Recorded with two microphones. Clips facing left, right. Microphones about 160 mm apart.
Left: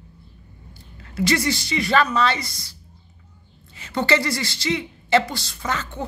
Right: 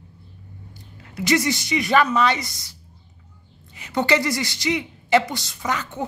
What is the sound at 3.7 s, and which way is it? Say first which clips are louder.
A woman's voice: right 1 dB; 15° right (ahead or behind).